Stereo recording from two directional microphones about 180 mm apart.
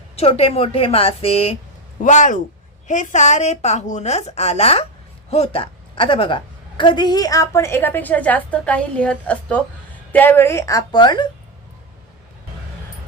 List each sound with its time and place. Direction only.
0.2 s a woman's voice: 30° left (ahead or behind)